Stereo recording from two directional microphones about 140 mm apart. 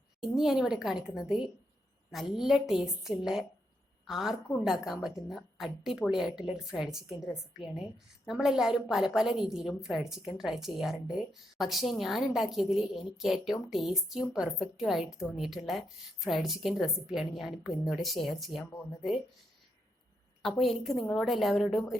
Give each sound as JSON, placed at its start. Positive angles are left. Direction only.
{"t": 0.2, "sound": "a woman's voice", "side_deg": -5}
{"t": 20.4, "sound": "a woman's voice", "side_deg": 0}